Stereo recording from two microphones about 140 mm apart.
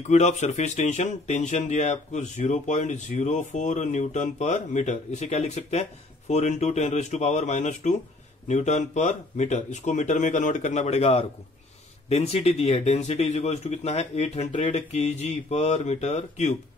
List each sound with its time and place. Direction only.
0.0 s speech: 55° left (ahead or behind)